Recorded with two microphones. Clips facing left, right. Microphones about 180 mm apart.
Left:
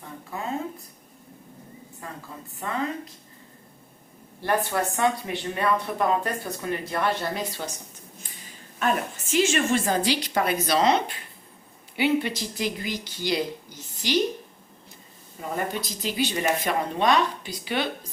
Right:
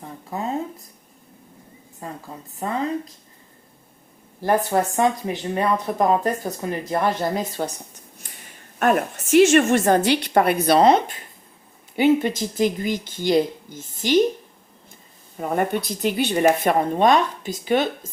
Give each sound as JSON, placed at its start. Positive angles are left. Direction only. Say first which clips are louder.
{"t": 2.6, "sound": "speech", "louder": "right 5 dB", "side_deg": -35}
{"t": 4.4, "sound": "speech", "louder": "right 5 dB", "side_deg": -35}
{"t": 8.8, "sound": "a woman's voice", "louder": "right 6 dB", "side_deg": -60}
{"t": 15.4, "sound": "speech", "louder": "right 7 dB", "side_deg": -55}